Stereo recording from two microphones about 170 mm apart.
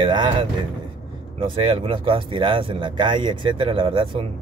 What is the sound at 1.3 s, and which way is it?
Speech, 30° right (ahead or behind).